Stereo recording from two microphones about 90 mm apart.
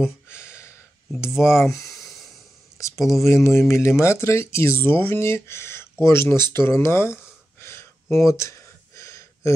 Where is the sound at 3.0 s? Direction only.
Centre (ahead or behind).